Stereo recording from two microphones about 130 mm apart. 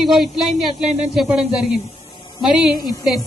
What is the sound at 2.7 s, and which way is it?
Speech, 30° left (ahead or behind).